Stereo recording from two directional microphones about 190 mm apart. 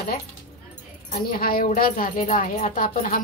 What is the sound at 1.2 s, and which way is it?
Speech, 50° left (ahead or behind).